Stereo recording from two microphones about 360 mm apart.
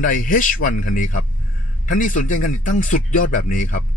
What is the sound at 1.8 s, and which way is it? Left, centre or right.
Speech, left.